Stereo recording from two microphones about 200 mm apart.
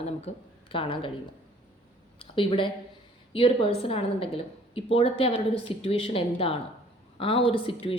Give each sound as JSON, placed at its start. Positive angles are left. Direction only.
{"t": 0.0, "sound": "speech", "side_deg": 30}
{"t": 2.1, "sound": "a sound", "side_deg": 25}
{"t": 3.3, "sound": "a woman's voice", "side_deg": 25}